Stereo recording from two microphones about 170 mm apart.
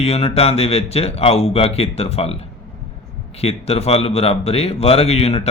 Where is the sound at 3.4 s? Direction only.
35° left (ahead or behind).